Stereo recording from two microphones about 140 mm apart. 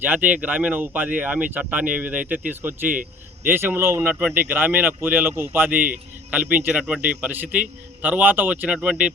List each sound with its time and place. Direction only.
0.0 s a man's voice: 10° right (ahead or behind)